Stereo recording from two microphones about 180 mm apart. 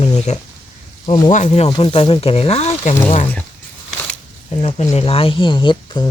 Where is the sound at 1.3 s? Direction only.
40° left (ahead or behind).